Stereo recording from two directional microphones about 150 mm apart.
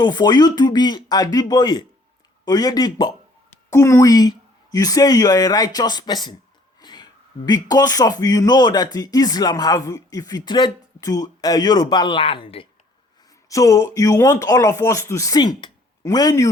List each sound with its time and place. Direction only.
0.0 s speech: 30° left (ahead or behind)
13.5 s speech: 20° left (ahead or behind)